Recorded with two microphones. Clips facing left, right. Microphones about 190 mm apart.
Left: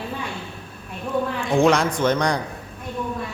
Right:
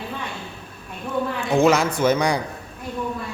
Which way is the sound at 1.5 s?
5° right (ahead or behind).